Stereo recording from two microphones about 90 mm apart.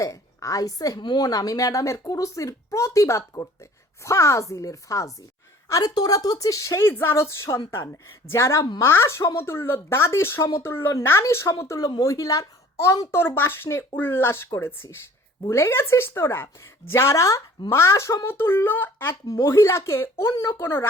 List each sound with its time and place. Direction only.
0.0 s a woman's voice: 35° left (ahead or behind)
13.1 s a woman's voice: 25° left (ahead or behind)